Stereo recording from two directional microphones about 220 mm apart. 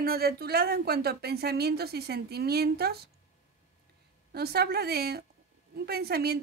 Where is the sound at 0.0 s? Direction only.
45° right (ahead or behind).